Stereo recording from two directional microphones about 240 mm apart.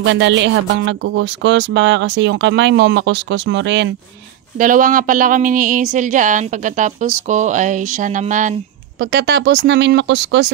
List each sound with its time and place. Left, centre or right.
0.0 s speech: right
4.6 s speech: right